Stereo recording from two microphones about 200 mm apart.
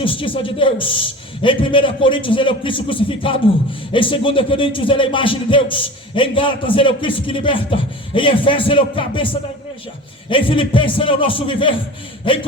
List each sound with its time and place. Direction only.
0.0 s speech: 25° left (ahead or behind)